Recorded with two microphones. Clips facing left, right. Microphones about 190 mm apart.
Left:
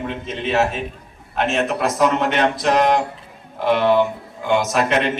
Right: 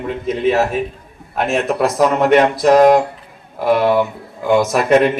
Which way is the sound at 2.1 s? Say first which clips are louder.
Right 6 dB; 40° right (ahead or behind).